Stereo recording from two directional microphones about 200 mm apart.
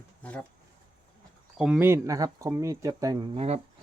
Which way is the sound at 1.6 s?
5° right (ahead or behind).